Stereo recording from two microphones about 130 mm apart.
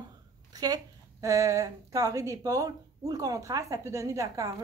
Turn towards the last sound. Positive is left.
turn(degrees=-25)  # may be behind; listen again after turning